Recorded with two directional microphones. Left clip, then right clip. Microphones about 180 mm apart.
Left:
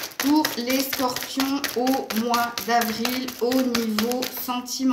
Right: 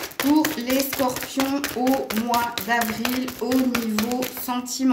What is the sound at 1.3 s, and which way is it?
Speech, 30° right (ahead or behind).